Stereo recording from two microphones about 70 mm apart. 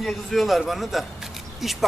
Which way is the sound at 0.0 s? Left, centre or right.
Centre.